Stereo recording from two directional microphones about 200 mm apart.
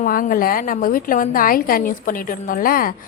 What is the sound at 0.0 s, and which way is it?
A woman's voice, 45° left (ahead or behind).